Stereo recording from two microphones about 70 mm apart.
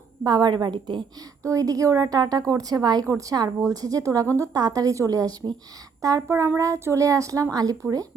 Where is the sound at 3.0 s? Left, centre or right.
Right.